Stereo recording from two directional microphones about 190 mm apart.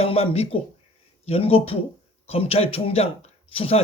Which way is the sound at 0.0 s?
30° left (ahead or behind).